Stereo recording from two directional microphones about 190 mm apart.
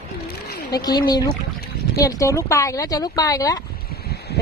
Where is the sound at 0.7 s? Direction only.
20° left (ahead or behind).